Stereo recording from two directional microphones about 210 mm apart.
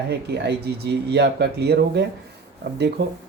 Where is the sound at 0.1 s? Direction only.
55° right (ahead or behind).